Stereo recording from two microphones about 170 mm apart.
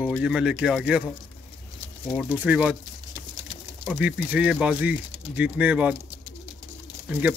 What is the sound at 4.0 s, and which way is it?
Speech, 5° right (ahead or behind).